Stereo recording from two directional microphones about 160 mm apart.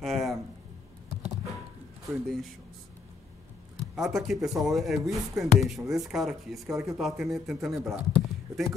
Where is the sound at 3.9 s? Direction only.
Centre (ahead or behind).